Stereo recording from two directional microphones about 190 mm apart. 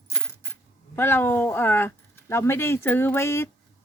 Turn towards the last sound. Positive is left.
turn(degrees=15)  # may be behind; listen again after turning